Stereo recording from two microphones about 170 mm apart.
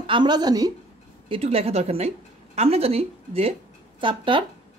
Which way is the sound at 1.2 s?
35° right (ahead or behind).